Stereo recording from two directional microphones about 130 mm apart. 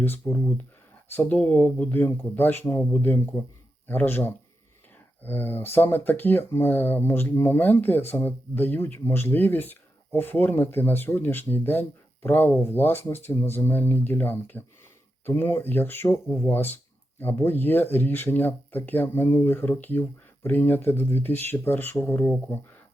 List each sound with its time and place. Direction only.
0.0 s speech: 15° left (ahead or behind)